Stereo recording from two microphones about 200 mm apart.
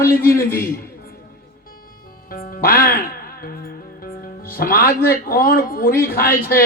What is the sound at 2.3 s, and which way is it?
Speech, 45° left (ahead or behind).